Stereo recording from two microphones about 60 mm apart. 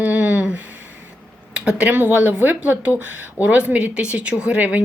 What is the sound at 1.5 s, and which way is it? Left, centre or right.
Speech, centre.